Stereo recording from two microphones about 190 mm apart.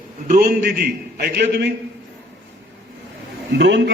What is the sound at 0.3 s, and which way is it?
A man's voice, 50° right (ahead or behind).